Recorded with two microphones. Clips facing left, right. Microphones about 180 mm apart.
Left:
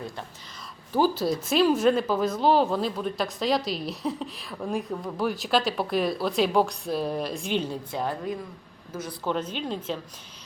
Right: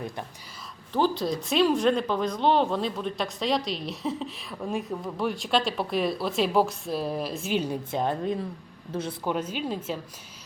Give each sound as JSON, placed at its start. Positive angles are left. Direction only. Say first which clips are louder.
{"t": 0.9, "sound": "speech", "louder": "left 2 dB", "side_deg": 5}
{"t": 7.7, "sound": "speech", "louder": "right 2 dB", "side_deg": -20}
{"t": 9.2, "sound": "speech", "louder": "left 2 dB", "side_deg": -10}